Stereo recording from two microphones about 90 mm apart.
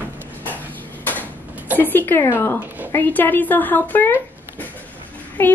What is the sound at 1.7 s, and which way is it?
Speech, 20° left (ahead or behind).